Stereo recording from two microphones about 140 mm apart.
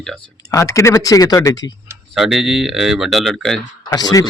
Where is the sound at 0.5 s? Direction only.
20° left (ahead or behind).